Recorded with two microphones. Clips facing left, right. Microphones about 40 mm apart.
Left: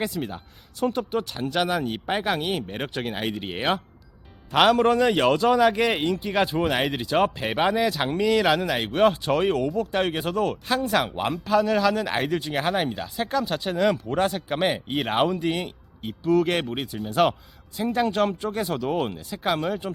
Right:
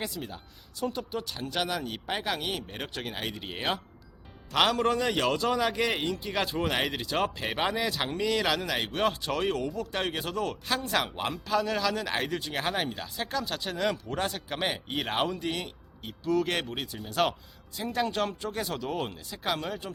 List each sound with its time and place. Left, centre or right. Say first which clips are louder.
0.2 s speech: left 8 dB; left
1.5 s speech: left 7 dB; left
4.5 s speech: left 7 dB; centre
5.0 s speech: left 7 dB; left